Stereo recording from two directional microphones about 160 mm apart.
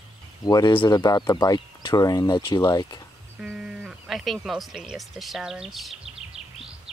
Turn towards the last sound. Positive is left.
turn(degrees=0)  # may be behind; listen again after turning